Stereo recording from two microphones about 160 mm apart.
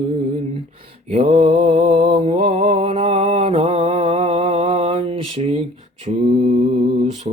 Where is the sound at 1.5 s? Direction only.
35° right (ahead or behind).